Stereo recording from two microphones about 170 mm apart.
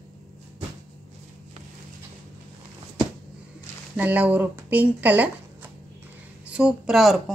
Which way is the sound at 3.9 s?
10° right (ahead or behind).